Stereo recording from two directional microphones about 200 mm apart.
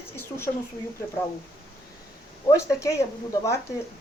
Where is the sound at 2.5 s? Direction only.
15° left (ahead or behind).